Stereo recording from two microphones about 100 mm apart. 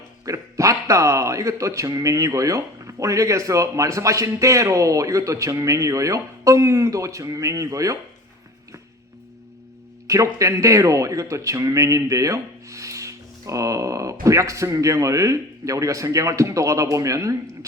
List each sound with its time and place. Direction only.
0.3 s a man's voice: 30° right (ahead or behind)
10.1 s a man's voice: 30° right (ahead or behind)